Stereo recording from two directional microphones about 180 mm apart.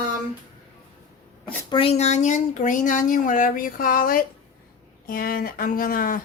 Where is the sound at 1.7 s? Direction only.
30° left (ahead or behind); by 6.2 s 55° left (ahead or behind).